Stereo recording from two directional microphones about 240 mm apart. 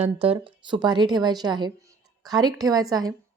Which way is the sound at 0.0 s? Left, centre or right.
Right.